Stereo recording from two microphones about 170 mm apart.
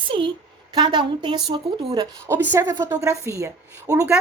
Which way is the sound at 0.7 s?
25° right (ahead or behind).